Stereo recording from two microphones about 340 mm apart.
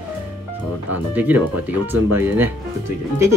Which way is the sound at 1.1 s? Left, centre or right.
Centre.